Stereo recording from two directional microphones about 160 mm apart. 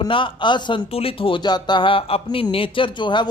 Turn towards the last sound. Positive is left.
turn(degrees=30)  # may be behind; listen again after turning